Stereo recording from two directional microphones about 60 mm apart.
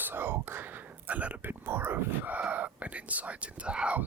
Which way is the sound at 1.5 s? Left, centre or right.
Right.